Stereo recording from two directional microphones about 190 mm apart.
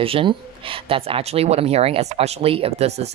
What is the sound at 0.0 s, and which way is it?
Speech, 30° right (ahead or behind).